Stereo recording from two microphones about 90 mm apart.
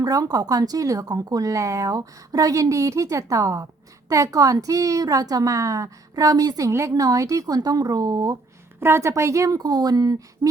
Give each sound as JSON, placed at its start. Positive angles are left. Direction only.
{"t": 0.0, "sound": "a woman's voice", "side_deg": -40}
{"t": 8.8, "sound": "a woman's voice", "side_deg": -30}